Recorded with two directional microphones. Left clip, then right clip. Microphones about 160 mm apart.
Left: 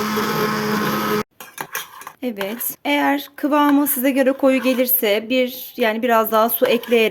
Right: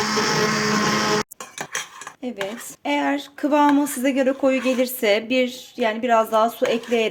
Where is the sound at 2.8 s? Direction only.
25° left (ahead or behind).